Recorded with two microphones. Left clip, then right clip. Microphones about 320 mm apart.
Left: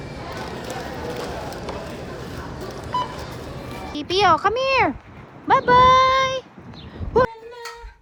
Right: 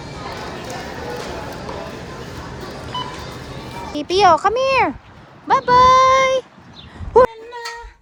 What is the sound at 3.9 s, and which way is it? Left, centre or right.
A child's voice, centre.